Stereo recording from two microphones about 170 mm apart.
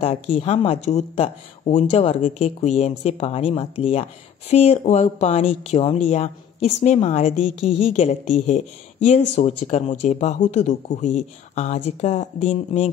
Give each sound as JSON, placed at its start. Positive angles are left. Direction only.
{"t": 0.0, "sound": "a woman's voice", "side_deg": 35}